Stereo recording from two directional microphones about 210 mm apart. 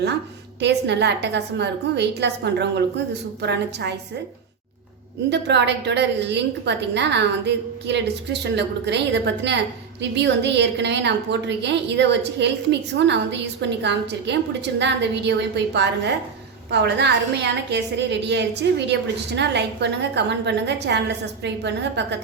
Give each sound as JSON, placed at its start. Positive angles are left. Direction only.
{"t": 0.6, "sound": "a woman's voice", "side_deg": -55}
{"t": 5.3, "sound": "a woman's voice", "side_deg": -55}